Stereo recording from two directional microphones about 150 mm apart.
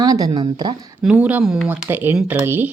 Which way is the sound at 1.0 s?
10° right (ahead or behind).